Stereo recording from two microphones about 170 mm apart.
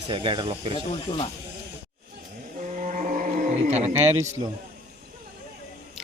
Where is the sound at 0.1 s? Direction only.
30° right (ahead or behind).